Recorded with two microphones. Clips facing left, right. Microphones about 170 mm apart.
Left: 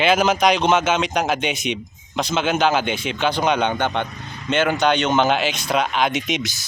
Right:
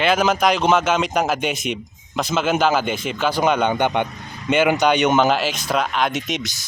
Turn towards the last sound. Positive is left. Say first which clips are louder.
# left 2 dB
turn(degrees=0)  # may be behind; listen again after turning